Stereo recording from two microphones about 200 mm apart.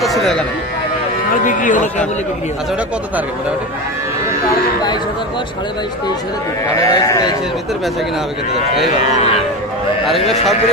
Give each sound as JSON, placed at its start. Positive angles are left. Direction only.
{"t": 0.0, "sound": "speech", "side_deg": 0}
{"t": 1.5, "sound": "a man's voice", "side_deg": 40}
{"t": 6.7, "sound": "speech", "side_deg": 15}
{"t": 8.9, "sound": "a man's voice", "side_deg": 35}
{"t": 10.1, "sound": "a man's voice", "side_deg": 0}